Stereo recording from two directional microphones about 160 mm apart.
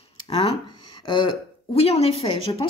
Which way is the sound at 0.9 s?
30° left (ahead or behind).